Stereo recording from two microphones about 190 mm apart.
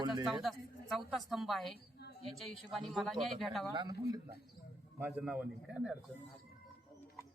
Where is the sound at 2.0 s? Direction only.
60° left (ahead or behind).